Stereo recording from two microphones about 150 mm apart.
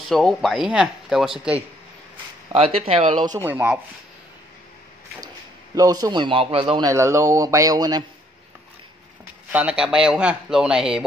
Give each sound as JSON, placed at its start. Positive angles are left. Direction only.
{"t": 0.1, "sound": "a man's voice", "side_deg": 0}
{"t": 2.5, "sound": "a man's voice", "side_deg": -40}
{"t": 3.4, "sound": "speech", "side_deg": -10}
{"t": 5.8, "sound": "a man's voice", "side_deg": -25}
{"t": 6.8, "sound": "speech", "side_deg": -20}
{"t": 9.5, "sound": "a man's voice", "side_deg": -10}